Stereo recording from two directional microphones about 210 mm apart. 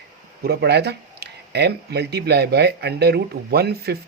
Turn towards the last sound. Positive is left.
turn(degrees=-50)  # may be behind; listen again after turning